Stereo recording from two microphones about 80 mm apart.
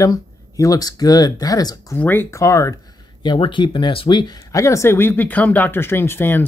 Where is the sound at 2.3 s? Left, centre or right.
Left.